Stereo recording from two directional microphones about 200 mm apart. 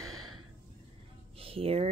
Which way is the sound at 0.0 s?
90° right.